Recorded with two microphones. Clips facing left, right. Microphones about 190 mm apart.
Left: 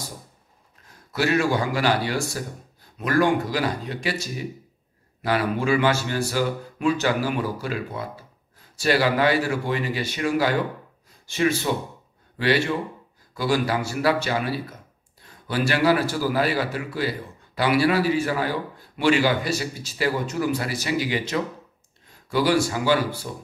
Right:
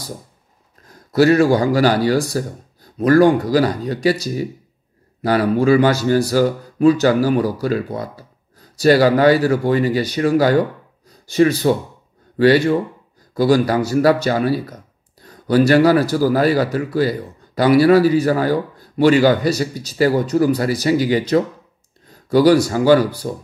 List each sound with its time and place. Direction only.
1.1 s a man's voice: 40° right (ahead or behind)